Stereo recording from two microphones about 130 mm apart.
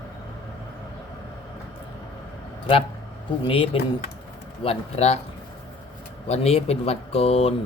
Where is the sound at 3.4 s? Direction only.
45° left (ahead or behind).